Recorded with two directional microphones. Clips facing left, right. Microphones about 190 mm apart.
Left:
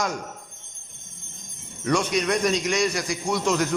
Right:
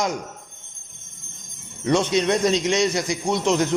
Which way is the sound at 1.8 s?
25° right (ahead or behind).